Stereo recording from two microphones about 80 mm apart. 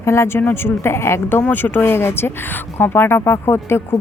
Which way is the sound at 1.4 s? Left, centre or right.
Left.